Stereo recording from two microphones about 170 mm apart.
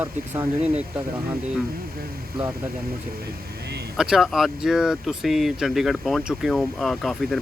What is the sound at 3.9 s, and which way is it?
Speech, 5° right (ahead or behind).